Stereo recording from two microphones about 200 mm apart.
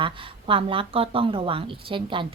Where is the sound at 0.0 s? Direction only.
25° right (ahead or behind).